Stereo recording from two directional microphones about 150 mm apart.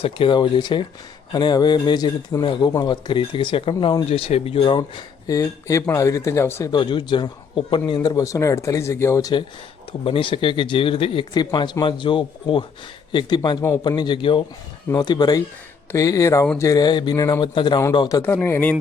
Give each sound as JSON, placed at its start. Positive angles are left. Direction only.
{"t": 0.0, "sound": "speech", "side_deg": 35}
{"t": 6.7, "sound": "speech", "side_deg": 30}
{"t": 10.0, "sound": "speech", "side_deg": 35}
{"t": 18.2, "sound": "speech", "side_deg": 15}